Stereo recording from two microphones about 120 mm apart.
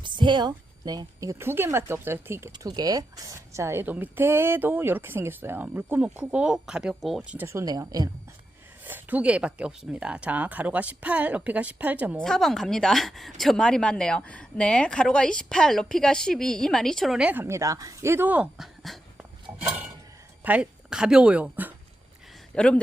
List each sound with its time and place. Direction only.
0.0 s a woman's voice: 40° right (ahead or behind); by 2.5 s 20° right (ahead or behind)
2.5 s a woman's voice: 35° right (ahead or behind); by 7.2 s 5° right (ahead or behind)
7.3 s a woman's voice: 20° right (ahead or behind)
7.6 s a woman's voice: 30° right (ahead or behind)
8.8 s a woman's voice: 15° right (ahead or behind)
12.2 s a woman's voice: 5° left (ahead or behind)
20.4 s speech: 10° right (ahead or behind)
22.5 s speech: 10° left (ahead or behind)